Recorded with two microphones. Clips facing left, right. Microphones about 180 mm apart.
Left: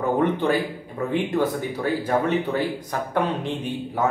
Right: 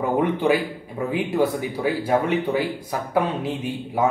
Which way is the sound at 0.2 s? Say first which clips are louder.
Right 1 dB; 10° right (ahead or behind).